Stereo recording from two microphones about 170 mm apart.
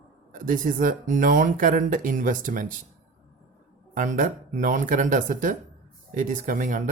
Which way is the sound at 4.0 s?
50° right (ahead or behind).